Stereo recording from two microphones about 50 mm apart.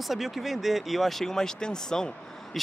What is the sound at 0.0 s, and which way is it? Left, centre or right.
Speech, centre.